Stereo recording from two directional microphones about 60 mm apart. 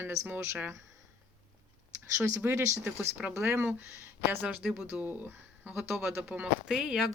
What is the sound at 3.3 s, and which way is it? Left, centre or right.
Speech, right.